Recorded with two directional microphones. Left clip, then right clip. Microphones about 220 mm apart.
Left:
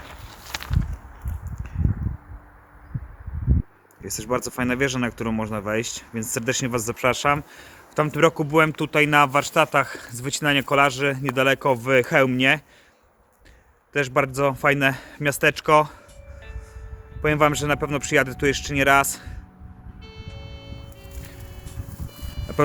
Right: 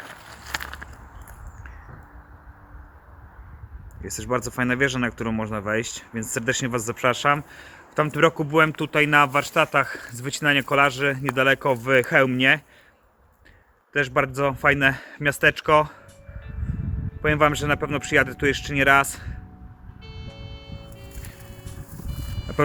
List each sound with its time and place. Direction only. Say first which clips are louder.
0.1 s a sound: right 2 dB; 10° right (ahead or behind)
4.0 s a man's voice: even; 15° left (ahead or behind)
13.9 s a man's voice: even; 20° left (ahead or behind)
17.2 s speech: even; 20° left (ahead or behind)
20.0 s music: even; centre (ahead or behind)
21.5 s vehicle: even; centre (ahead or behind)